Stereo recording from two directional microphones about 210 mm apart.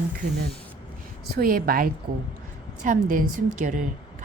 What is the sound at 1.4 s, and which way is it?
A woman's voice, 45° right (ahead or behind).